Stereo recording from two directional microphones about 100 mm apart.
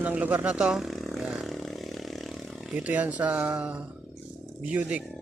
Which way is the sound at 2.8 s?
15° right (ahead or behind).